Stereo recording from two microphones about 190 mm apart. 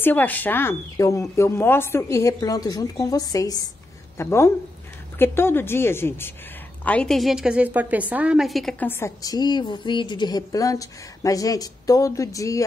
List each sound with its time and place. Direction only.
0.0 s a woman's voice: 10° left (ahead or behind)